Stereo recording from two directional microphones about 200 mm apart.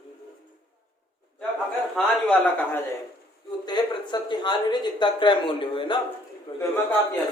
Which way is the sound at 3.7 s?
20° left (ahead or behind).